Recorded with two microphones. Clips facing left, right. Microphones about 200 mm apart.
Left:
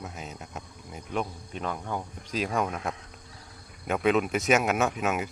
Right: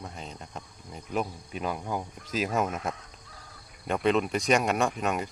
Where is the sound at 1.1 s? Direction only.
5° right (ahead or behind).